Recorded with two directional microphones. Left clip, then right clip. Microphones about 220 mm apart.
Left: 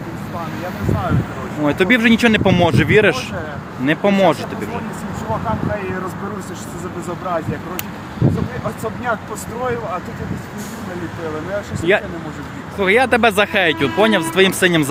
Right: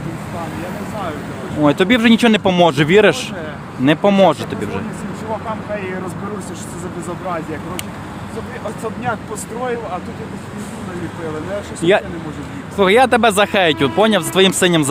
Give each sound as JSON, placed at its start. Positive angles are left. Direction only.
{"t": 1.6, "sound": "speech", "side_deg": -20}
{"t": 11.8, "sound": "speech", "side_deg": -25}